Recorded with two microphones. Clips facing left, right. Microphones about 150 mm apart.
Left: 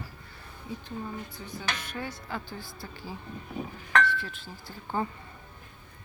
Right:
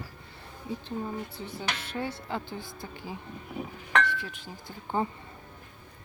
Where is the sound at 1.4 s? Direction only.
30° right (ahead or behind).